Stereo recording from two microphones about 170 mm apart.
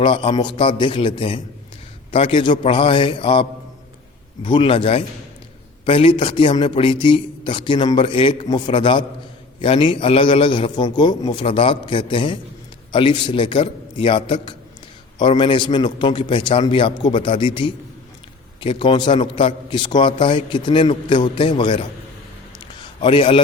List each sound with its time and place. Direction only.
0.0 s a man's voice: 30° left (ahead or behind)
4.4 s a man's voice: 30° left (ahead or behind)
23.0 s a man's voice: 30° left (ahead or behind)